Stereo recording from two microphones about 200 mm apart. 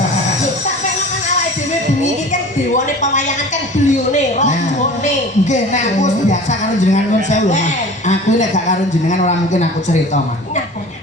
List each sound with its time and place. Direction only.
2.3 s a man's voice: 35° left (ahead or behind)